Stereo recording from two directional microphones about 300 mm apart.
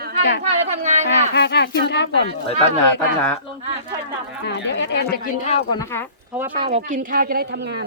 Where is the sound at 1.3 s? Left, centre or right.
Left.